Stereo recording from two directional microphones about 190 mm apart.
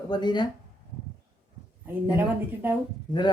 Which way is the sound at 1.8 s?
10° right (ahead or behind).